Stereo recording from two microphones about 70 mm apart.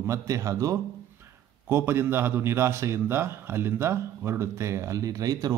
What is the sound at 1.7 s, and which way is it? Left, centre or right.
Speech, right.